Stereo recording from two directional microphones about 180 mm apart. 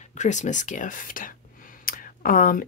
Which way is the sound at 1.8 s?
50° left (ahead or behind).